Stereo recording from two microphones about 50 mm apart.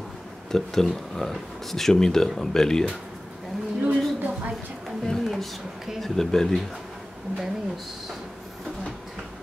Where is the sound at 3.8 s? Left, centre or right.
Right.